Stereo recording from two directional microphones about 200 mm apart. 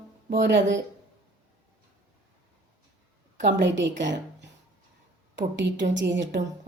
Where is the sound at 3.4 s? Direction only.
60° right (ahead or behind).